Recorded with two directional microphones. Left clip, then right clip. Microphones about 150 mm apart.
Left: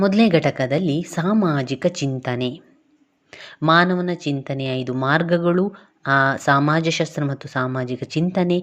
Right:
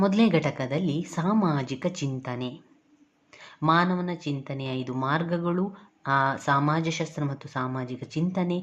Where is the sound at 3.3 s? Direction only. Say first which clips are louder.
Left 8 dB; 40° left (ahead or behind).